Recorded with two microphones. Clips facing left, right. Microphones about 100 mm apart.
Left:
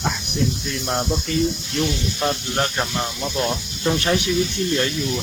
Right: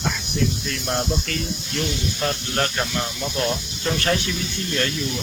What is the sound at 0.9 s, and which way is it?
Speech, 15° left (ahead or behind).